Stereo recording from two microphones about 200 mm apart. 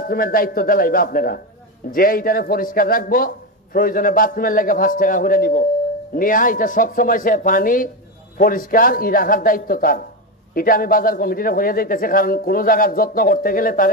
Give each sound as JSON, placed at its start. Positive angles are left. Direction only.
{"t": 0.0, "sound": "a man's voice", "side_deg": 45}